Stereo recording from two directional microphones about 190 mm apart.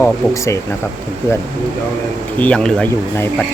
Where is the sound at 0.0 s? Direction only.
15° left (ahead or behind).